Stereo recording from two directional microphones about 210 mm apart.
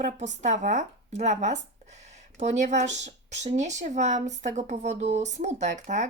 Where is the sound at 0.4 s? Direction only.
35° right (ahead or behind).